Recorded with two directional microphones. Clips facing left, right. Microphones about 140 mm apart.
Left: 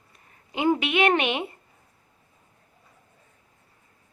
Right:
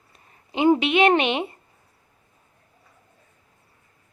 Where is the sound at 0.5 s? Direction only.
25° right (ahead or behind).